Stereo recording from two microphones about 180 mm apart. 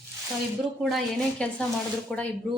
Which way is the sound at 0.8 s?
Centre (ahead or behind).